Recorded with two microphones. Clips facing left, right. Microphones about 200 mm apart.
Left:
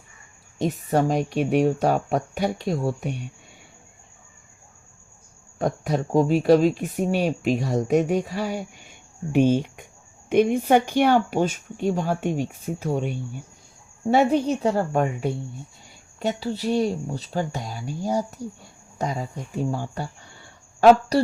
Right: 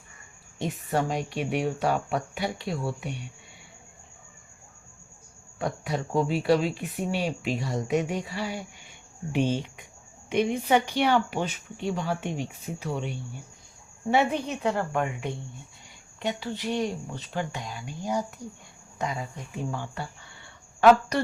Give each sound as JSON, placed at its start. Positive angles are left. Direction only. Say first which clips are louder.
{"t": 0.6, "sound": "speech", "louder": "left 6 dB", "side_deg": 40}
{"t": 5.5, "sound": "speech", "louder": "left 6 dB", "side_deg": 45}